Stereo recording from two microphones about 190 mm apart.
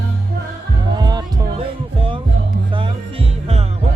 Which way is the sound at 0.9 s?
20° right (ahead or behind).